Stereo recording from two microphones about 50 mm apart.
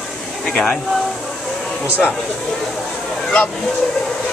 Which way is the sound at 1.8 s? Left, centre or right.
Right.